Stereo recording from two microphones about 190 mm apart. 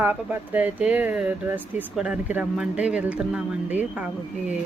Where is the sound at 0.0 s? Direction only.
10° right (ahead or behind).